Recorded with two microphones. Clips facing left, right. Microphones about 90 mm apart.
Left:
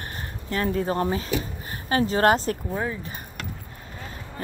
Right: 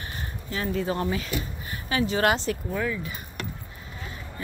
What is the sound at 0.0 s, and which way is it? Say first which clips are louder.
Speech: left 1 dB; 50° left (ahead or behind).